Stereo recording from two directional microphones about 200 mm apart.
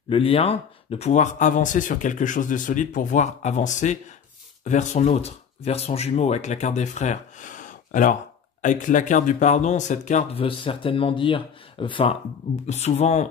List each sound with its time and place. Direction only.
0.1 s speech: 30° left (ahead or behind)